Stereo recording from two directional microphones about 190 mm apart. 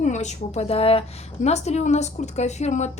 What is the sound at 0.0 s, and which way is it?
A woman's voice, 40° left (ahead or behind).